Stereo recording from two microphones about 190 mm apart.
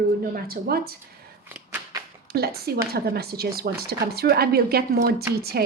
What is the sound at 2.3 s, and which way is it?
A woman's voice, 55° right (ahead or behind).